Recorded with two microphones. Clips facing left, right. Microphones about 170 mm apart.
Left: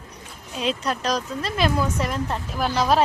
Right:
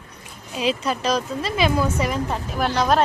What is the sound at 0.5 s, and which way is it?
A woman's voice, centre (ahead or behind).